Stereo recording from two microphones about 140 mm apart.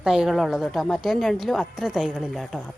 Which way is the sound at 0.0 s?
5° right (ahead or behind).